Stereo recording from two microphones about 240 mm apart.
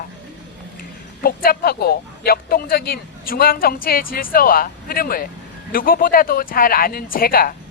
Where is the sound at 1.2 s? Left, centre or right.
Left.